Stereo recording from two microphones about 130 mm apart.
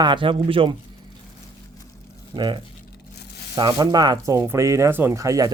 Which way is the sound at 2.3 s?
35° right (ahead or behind).